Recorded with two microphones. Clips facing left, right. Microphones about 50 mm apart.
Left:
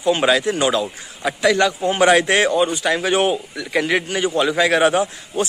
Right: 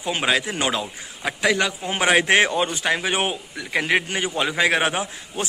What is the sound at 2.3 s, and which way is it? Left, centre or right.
Speech, right.